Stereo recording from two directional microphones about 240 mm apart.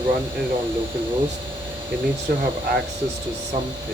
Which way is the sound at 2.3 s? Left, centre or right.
Right.